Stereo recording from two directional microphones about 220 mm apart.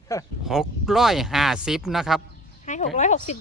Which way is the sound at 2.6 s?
35° left (ahead or behind).